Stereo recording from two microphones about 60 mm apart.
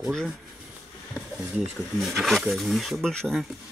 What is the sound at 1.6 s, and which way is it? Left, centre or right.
Speech, centre.